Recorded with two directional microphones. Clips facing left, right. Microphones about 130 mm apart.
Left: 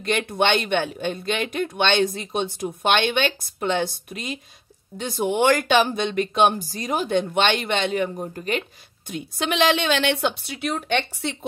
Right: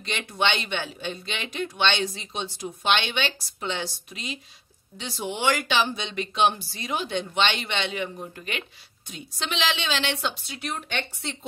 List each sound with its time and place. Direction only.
0.0 s speech: 50° left (ahead or behind)
9.1 s a woman's voice: 55° left (ahead or behind)